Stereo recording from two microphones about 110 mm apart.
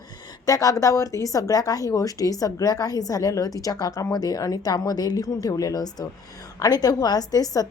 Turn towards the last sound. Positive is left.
turn(degrees=35)  # may be behind; listen again after turning